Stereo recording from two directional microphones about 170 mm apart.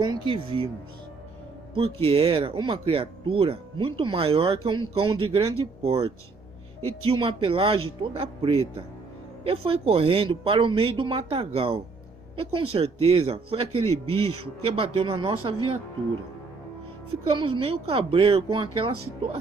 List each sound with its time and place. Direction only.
0.0 s speech: 25° right (ahead or behind)
1.7 s speech: 30° right (ahead or behind)
17.2 s speech: 30° right (ahead or behind)